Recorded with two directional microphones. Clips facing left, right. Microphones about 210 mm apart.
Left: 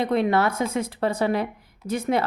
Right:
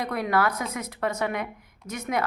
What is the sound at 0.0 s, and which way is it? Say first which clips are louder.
Speech: left 4 dB; 25° left (ahead or behind).